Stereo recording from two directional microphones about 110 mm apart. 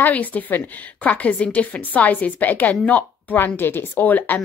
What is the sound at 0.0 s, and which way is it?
A woman's voice, 15° left (ahead or behind).